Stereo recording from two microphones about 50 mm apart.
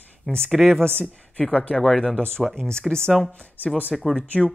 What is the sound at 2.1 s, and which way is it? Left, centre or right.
Speech, centre.